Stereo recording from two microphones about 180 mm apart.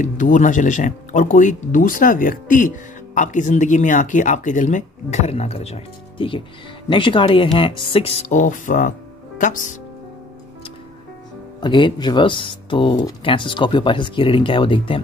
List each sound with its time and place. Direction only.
0.0 s speech: 45° left (ahead or behind)
11.6 s speech: 25° left (ahead or behind)